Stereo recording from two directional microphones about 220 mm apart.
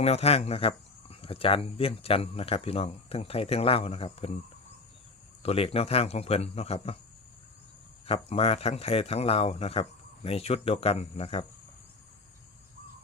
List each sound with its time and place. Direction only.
0.0 s speech: 30° left (ahead or behind)
5.4 s speech: 25° left (ahead or behind)
8.0 s speech: 30° left (ahead or behind)